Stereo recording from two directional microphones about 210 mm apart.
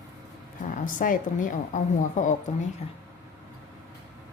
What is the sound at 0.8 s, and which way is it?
A woman's voice, 40° left (ahead or behind).